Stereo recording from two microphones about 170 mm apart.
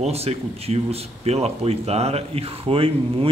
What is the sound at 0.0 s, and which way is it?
Speech, 35° right (ahead or behind).